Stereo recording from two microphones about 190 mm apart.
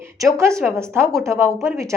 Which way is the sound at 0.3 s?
15° right (ahead or behind).